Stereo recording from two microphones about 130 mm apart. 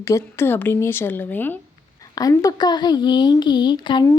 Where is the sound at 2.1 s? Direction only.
30° left (ahead or behind).